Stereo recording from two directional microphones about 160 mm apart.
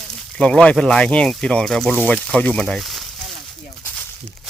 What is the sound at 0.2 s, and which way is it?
Speech, 5° left (ahead or behind).